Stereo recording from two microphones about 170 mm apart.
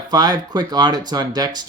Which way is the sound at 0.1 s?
25° right (ahead or behind).